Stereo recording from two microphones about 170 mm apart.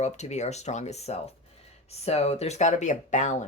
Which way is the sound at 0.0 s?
40° left (ahead or behind).